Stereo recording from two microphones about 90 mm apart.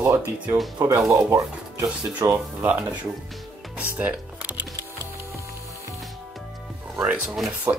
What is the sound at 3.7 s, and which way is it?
Music, 15° right (ahead or behind).